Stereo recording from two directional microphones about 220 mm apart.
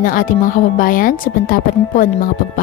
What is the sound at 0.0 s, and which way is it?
Speech, 40° left (ahead or behind).